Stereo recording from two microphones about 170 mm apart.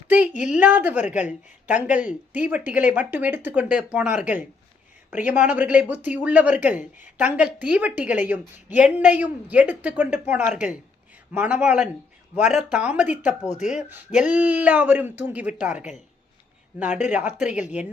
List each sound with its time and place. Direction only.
0.1 s a woman's voice: 10° right (ahead or behind)
13.5 s speech: 45° left (ahead or behind)
13.7 s a woman's voice: 10° right (ahead or behind)
17.1 s a woman's voice: 10° right (ahead or behind)